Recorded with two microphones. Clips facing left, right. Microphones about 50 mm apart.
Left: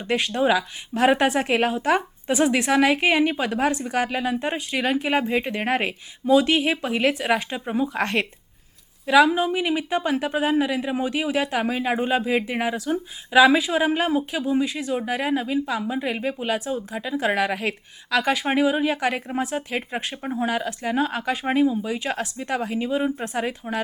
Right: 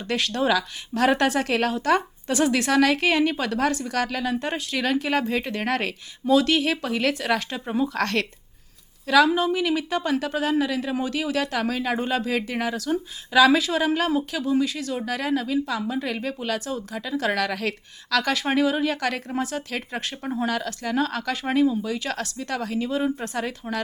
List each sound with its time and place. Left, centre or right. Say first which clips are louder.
0.0 s speech: left 2 dB; centre